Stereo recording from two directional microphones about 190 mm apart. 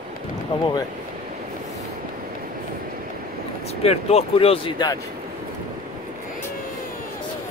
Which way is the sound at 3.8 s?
30° left (ahead or behind).